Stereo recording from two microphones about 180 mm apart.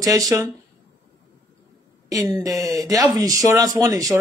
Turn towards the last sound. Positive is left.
turn(degrees=-20)  # may be behind; listen again after turning